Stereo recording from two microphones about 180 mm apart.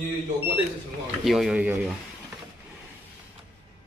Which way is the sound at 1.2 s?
Centre (ahead or behind).